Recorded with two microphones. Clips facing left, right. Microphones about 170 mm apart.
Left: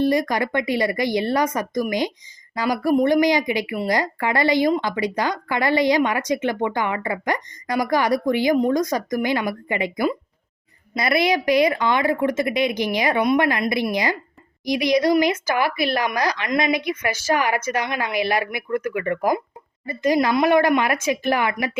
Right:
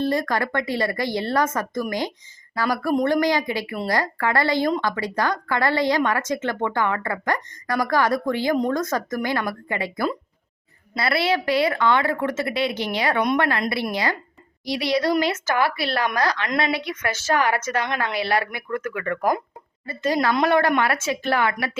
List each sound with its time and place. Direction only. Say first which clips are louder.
0.0 s speech: left 3 dB; 15° left (ahead or behind)